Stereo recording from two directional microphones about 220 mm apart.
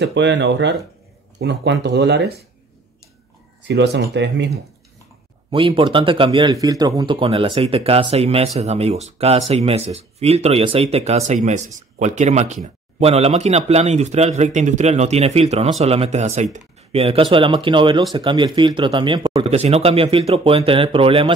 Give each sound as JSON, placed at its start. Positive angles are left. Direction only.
{"t": 0.0, "sound": "speech", "side_deg": -55}
{"t": 3.6, "sound": "speech", "side_deg": -50}
{"t": 5.5, "sound": "speech", "side_deg": -25}